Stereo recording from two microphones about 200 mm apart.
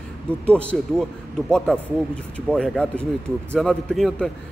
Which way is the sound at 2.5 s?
5° left (ahead or behind).